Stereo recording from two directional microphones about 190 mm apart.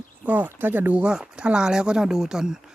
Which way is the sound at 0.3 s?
10° right (ahead or behind).